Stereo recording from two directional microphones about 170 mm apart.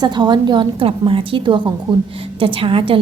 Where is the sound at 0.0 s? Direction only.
25° right (ahead or behind).